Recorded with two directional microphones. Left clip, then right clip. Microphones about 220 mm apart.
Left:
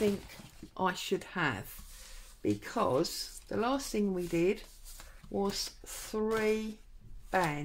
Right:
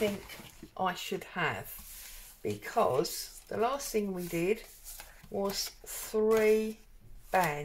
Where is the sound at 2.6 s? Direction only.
45° left (ahead or behind).